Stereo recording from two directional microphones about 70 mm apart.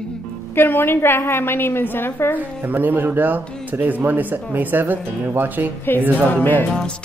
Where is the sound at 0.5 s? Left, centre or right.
Left.